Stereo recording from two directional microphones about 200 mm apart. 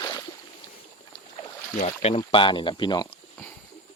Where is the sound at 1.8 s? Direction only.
30° left (ahead or behind).